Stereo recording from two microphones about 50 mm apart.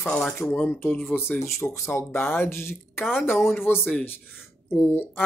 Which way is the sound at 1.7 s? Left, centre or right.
Left.